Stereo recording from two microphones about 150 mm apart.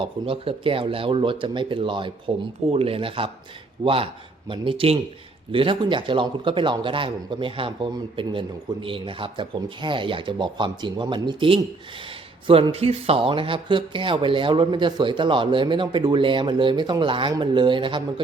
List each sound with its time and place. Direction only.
0.0 s a man's voice: 35° right (ahead or behind)